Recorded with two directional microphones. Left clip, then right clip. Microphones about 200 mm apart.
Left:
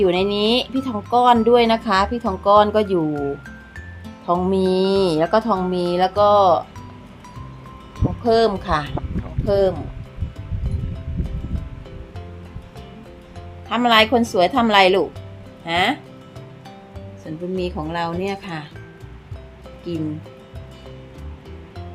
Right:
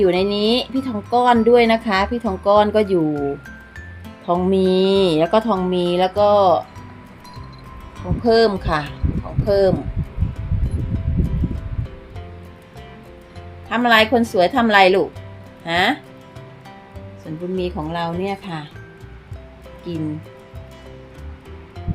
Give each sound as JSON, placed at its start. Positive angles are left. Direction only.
{"t": 0.0, "sound": "speech", "side_deg": -15}
{"t": 3.1, "sound": "speech", "side_deg": 0}
{"t": 4.3, "sound": "speech", "side_deg": -15}
{"t": 8.2, "sound": "speech", "side_deg": -15}
{"t": 13.7, "sound": "speech", "side_deg": -10}
{"t": 17.6, "sound": "speech", "side_deg": -10}
{"t": 19.9, "sound": "speech", "side_deg": -10}